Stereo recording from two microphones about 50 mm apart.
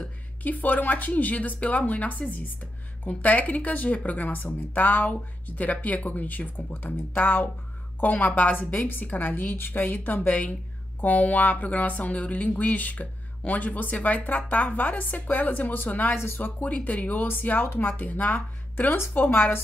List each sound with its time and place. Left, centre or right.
0.4 s speech: left